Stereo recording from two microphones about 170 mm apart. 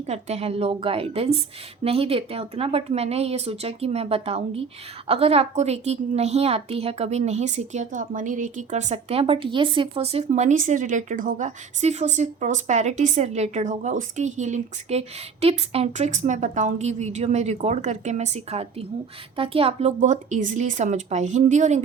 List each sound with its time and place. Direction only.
0.1 s a woman's voice: 40° right (ahead or behind)